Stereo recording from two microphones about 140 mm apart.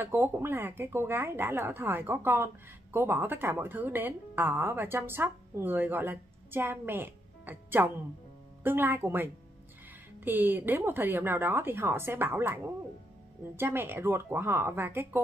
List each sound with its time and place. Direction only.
0.0 s speech: 15° right (ahead or behind)
13.6 s speech: 15° right (ahead or behind)